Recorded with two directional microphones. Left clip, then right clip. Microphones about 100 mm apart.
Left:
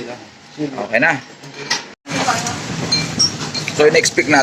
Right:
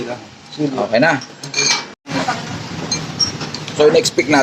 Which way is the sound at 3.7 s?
30° right (ahead or behind).